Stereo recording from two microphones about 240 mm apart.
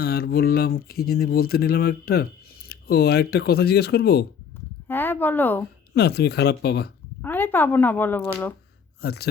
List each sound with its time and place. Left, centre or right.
0.0 s speech: left
4.9 s speech: centre
5.9 s speech: left
7.2 s speech: centre
9.0 s speech: left